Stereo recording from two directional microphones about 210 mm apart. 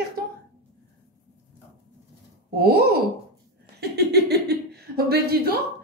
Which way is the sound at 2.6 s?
50° right (ahead or behind).